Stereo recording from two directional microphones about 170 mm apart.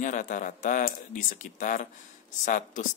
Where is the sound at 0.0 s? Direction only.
50° left (ahead or behind).